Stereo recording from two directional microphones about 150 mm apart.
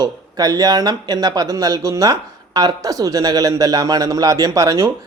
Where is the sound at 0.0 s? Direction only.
25° right (ahead or behind).